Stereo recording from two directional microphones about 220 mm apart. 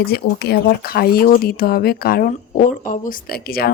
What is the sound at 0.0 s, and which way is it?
Speech, 45° left (ahead or behind).